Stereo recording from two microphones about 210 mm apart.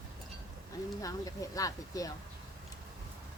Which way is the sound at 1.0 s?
15° left (ahead or behind).